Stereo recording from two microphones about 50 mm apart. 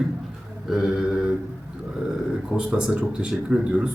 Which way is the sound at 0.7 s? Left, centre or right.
Centre.